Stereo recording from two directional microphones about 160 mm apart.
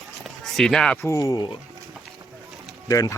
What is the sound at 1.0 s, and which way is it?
Speech, 20° left (ahead or behind).